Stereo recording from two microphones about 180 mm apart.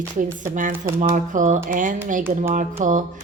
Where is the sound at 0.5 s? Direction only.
45° right (ahead or behind).